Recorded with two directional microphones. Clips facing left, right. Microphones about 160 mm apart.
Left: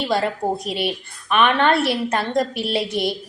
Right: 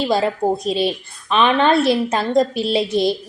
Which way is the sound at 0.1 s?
25° right (ahead or behind).